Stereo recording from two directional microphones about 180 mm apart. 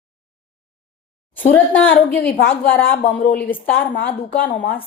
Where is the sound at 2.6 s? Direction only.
10° left (ahead or behind).